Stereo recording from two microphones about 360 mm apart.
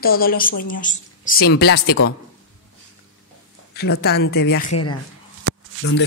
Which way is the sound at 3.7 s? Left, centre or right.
Left.